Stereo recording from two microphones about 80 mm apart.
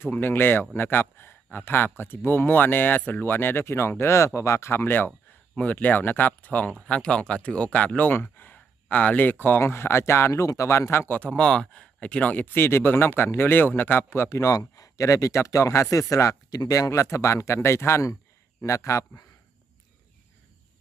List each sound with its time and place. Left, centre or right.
0.0 s speech: left
11.2 s speech: centre; by 19.2 s left